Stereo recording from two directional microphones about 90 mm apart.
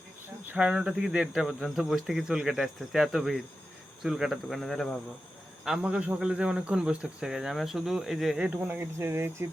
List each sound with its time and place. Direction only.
0.5 s speech: 10° right (ahead or behind); by 4.9 s 5° left (ahead or behind)
5.6 s a man's voice: 10° right (ahead or behind)
8.4 s speech: 20° right (ahead or behind)